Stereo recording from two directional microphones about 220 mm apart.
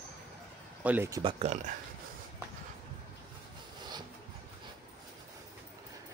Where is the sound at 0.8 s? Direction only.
10° right (ahead or behind).